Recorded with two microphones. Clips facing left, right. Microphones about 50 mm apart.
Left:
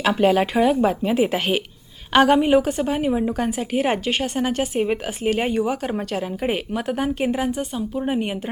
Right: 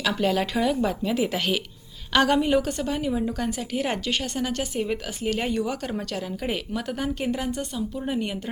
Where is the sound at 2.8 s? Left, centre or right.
Left.